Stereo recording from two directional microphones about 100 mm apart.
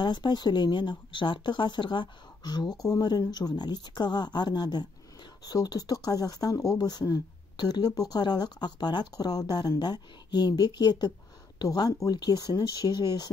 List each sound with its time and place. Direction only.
0.0 s speech: 50° left (ahead or behind)